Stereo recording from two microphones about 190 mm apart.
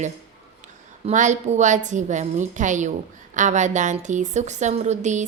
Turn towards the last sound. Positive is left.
turn(degrees=-40)  # may be behind; listen again after turning